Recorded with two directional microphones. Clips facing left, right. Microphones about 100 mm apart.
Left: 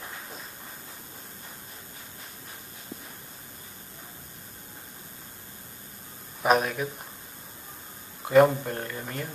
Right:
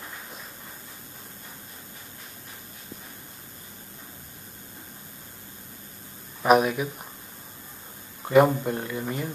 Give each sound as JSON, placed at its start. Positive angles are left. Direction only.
{"t": 6.4, "sound": "speech", "side_deg": -10}
{"t": 8.3, "sound": "speech", "side_deg": -10}